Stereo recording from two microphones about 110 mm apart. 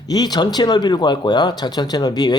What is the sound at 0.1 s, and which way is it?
Speech, 40° left (ahead or behind).